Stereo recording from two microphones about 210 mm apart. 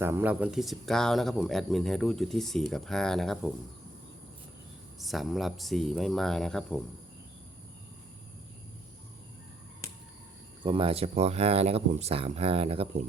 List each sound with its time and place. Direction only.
0.0 s speech: 10° right (ahead or behind)
4.9 s speech: centre (ahead or behind)
10.6 s speech: 25° right (ahead or behind)